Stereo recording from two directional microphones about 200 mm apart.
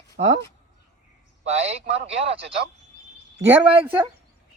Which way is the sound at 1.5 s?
30° right (ahead or behind).